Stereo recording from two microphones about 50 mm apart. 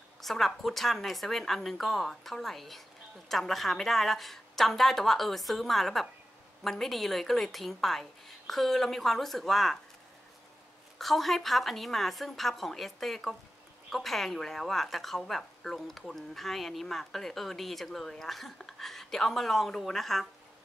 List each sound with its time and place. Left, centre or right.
0.2 s a woman's voice: centre
11.0 s a woman's voice: centre